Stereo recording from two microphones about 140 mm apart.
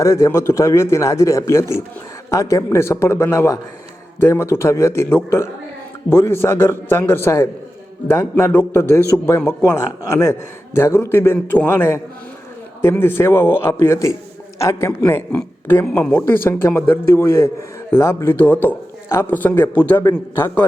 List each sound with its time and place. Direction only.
0.0 s a man's voice: 20° left (ahead or behind)